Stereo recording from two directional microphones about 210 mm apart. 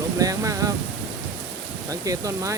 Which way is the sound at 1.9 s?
15° right (ahead or behind).